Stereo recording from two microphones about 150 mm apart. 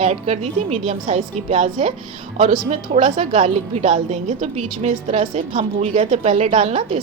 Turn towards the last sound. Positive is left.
turn(degrees=-45)  # may be behind; listen again after turning